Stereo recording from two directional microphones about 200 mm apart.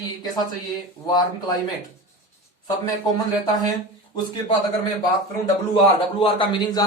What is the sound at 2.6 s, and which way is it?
Speech, 20° left (ahead or behind).